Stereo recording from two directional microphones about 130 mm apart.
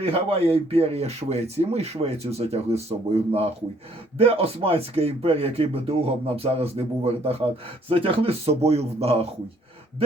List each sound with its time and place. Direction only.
0.0 s speech: 50° right (ahead or behind)